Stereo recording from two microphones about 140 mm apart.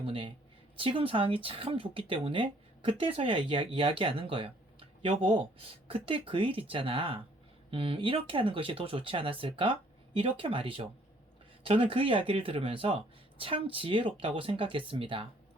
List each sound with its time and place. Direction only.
0.0 s speech: 40° right (ahead or behind)